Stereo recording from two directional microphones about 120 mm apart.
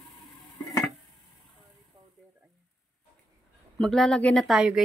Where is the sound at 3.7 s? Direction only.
5° left (ahead or behind).